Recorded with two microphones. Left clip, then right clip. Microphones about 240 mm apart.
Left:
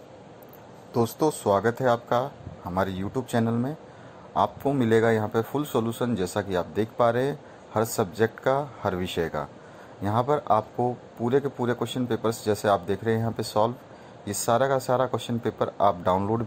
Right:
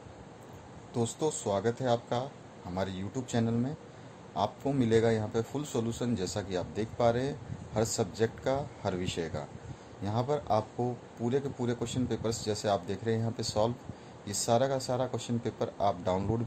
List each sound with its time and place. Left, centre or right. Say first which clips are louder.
0.9 s a man's voice: left 8 dB; centre